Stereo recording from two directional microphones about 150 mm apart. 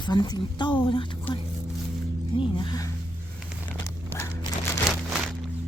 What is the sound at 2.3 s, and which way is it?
Speech, 30° left (ahead or behind).